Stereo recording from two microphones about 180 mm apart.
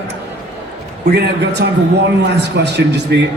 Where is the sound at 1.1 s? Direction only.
65° right (ahead or behind).